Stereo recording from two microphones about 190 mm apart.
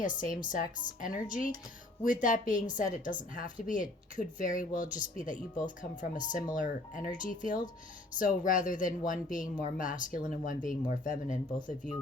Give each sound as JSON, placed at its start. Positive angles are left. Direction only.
{"t": 0.0, "sound": "a woman's voice", "side_deg": 45}